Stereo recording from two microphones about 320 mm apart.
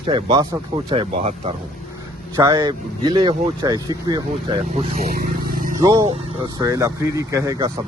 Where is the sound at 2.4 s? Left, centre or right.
Centre.